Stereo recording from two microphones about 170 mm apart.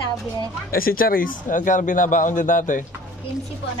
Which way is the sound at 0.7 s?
60° left (ahead or behind).